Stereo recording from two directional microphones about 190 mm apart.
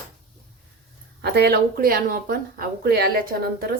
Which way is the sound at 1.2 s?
60° right (ahead or behind).